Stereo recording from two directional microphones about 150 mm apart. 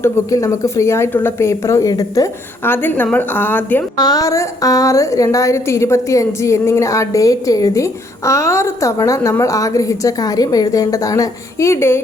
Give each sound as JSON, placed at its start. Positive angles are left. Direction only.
{"t": 0.0, "sound": "speech", "side_deg": 20}
{"t": 3.9, "sound": "a woman's voice", "side_deg": 25}